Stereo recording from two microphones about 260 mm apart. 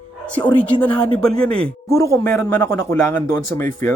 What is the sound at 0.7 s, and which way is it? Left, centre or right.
Speech, centre.